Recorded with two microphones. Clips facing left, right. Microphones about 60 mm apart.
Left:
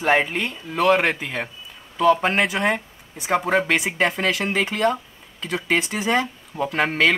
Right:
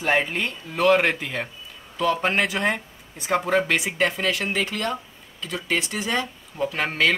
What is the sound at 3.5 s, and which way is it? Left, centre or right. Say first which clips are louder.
Speech: left 1 dB; left.